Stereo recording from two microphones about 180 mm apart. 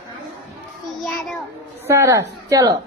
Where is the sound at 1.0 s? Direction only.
Centre (ahead or behind).